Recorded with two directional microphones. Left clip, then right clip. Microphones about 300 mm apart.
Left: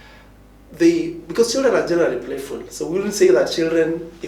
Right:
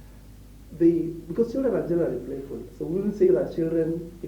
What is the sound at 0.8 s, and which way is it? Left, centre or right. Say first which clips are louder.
Speech: left 5 dB; centre.